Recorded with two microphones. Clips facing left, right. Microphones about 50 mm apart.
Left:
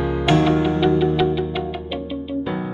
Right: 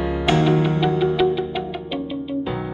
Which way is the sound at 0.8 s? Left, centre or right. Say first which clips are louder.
Left 1 dB; centre.